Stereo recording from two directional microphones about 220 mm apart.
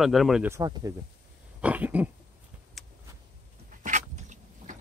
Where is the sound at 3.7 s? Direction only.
35° right (ahead or behind).